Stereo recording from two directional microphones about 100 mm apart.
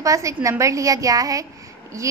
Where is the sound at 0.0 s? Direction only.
30° right (ahead or behind).